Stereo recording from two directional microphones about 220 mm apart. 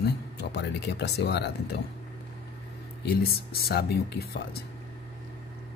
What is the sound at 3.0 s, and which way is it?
Speech, 45° left (ahead or behind).